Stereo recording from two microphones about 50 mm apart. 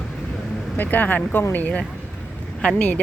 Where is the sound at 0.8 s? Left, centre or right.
Left.